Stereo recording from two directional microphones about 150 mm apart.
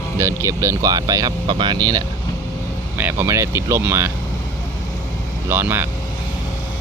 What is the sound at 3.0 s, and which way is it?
Speech, 15° right (ahead or behind).